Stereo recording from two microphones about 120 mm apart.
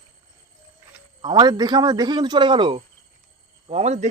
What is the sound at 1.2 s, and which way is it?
A man's voice, 35° right (ahead or behind).